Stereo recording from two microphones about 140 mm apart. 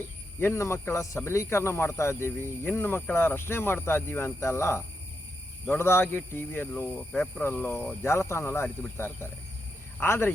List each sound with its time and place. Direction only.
0.3 s speech: 15° left (ahead or behind)